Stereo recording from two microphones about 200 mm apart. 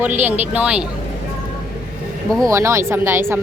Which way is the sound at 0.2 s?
10° right (ahead or behind).